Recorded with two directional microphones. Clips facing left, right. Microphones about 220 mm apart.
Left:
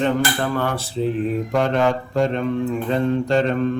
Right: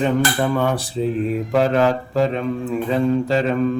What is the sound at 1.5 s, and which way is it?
Speech, 5° right (ahead or behind).